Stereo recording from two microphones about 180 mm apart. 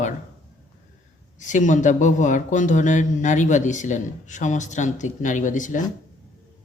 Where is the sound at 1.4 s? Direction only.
45° left (ahead or behind).